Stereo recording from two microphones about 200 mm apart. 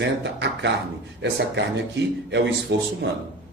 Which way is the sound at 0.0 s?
60° right (ahead or behind).